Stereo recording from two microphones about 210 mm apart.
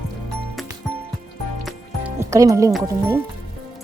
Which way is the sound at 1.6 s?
10° right (ahead or behind).